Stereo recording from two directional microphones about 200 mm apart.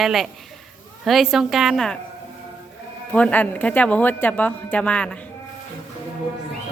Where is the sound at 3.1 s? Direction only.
5° left (ahead or behind).